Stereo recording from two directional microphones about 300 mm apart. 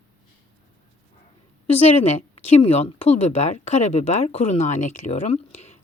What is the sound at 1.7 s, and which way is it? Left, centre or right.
Speech, centre.